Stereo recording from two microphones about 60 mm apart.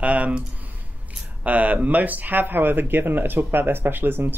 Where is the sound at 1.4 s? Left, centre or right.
Right.